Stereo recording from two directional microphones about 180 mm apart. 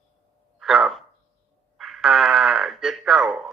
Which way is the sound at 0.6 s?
Centre (ahead or behind).